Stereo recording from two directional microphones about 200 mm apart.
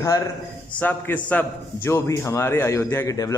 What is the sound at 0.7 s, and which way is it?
A man's voice, 10° left (ahead or behind).